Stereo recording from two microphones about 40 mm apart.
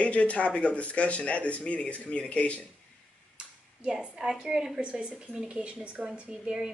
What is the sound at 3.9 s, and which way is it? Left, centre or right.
A woman's voice, centre.